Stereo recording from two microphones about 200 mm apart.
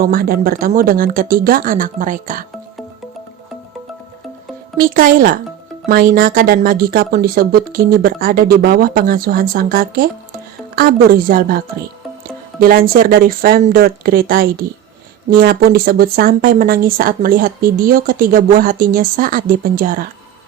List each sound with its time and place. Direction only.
0.0 s speech: 45° right (ahead or behind)
4.8 s speech: 45° right (ahead or behind)